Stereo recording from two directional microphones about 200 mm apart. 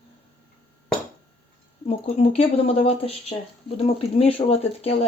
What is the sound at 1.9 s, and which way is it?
Speech, 30° left (ahead or behind).